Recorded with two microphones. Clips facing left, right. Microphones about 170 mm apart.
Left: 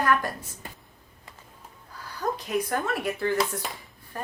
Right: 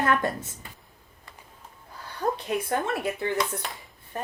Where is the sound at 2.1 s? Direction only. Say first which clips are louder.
Even; 30° right (ahead or behind).